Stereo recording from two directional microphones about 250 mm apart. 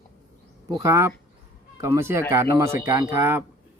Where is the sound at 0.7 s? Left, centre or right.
Centre.